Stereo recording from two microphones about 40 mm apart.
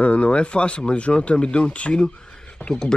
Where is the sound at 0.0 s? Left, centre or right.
Left.